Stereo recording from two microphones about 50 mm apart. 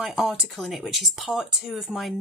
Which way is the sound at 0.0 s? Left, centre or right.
Centre.